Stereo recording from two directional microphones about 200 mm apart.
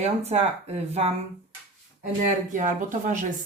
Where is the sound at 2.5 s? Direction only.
40° right (ahead or behind).